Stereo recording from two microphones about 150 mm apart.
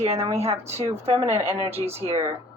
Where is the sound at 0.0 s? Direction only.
45° right (ahead or behind).